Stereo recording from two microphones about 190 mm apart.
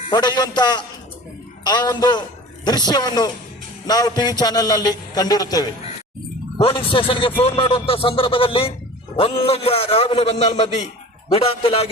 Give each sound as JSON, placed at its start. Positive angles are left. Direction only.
{"t": 0.1, "sound": "a man's voice", "side_deg": 20}